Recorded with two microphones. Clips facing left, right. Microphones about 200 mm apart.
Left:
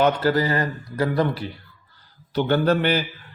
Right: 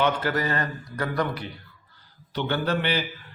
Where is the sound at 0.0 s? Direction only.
35° left (ahead or behind).